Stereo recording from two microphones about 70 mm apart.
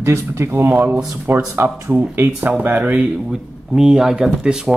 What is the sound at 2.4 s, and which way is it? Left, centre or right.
Speech, right.